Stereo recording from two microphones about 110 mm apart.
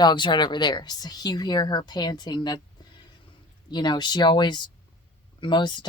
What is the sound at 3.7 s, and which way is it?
A woman's voice, 40° left (ahead or behind).